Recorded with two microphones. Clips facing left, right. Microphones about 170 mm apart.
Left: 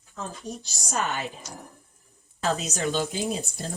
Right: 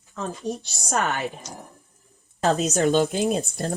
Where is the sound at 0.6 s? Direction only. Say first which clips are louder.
Right 2 dB; 60° right (ahead or behind).